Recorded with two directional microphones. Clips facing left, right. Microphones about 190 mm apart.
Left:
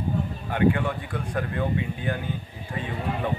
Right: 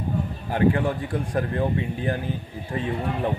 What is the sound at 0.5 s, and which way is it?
Speech, 35° right (ahead or behind).